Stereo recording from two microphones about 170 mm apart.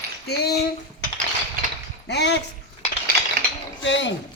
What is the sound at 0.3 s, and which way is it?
Speech, 70° left (ahead or behind).